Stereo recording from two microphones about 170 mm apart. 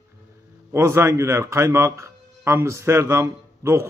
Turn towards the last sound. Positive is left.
turn(degrees=-15)  # may be behind; listen again after turning